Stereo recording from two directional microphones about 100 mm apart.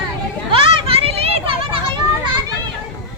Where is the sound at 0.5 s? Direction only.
65° right (ahead or behind).